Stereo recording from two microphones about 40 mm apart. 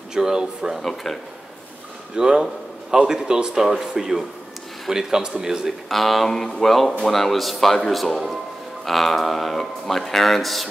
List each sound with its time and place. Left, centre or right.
0.1 s speech: centre
0.8 s speech: centre
2.1 s a man's voice: centre
5.9 s speech: centre